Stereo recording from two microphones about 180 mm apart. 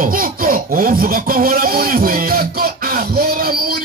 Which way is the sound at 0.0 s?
50° right (ahead or behind).